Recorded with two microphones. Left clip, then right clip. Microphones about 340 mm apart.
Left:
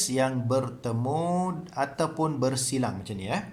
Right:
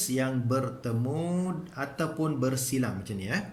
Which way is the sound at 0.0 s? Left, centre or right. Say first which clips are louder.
Left 4 dB; centre.